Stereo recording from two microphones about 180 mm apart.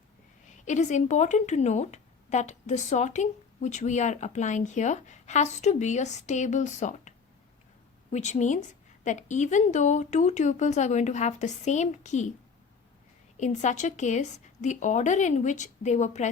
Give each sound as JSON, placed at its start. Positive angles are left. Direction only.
{"t": 0.6, "sound": "speech", "side_deg": 40}
{"t": 8.1, "sound": "speech", "side_deg": 40}
{"t": 13.3, "sound": "speech", "side_deg": 40}